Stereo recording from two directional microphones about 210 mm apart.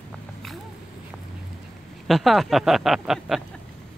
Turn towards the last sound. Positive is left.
turn(degrees=0)  # may be behind; listen again after turning